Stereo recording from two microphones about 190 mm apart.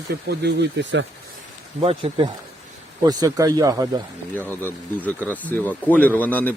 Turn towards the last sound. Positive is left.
turn(degrees=10)  # may be behind; listen again after turning